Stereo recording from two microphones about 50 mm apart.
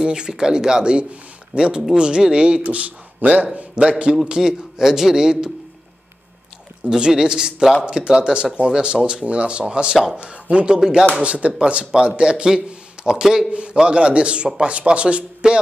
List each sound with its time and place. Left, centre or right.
0.0 s a man's voice: centre
2.6 s a man's voice: right
3.8 s a man's voice: centre
6.9 s a man's voice: centre
11.1 s a man's voice: right; by 13.5 s centre
13.5 s a man's voice: right